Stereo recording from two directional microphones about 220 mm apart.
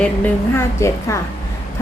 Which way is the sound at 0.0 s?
10° left (ahead or behind).